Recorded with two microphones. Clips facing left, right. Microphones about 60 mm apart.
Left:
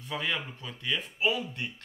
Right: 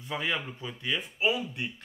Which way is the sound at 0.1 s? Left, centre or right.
Centre.